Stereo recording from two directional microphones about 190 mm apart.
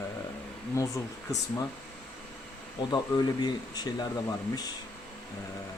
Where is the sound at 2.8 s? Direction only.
20° left (ahead or behind).